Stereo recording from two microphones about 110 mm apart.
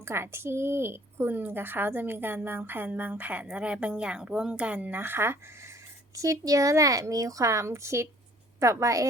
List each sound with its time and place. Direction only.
0.0 s speech: 25° right (ahead or behind)
6.1 s a woman's voice: 30° right (ahead or behind)